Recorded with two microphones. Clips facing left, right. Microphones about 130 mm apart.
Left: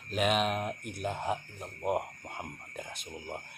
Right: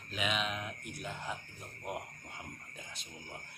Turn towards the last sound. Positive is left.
turn(degrees=60)  # may be behind; listen again after turning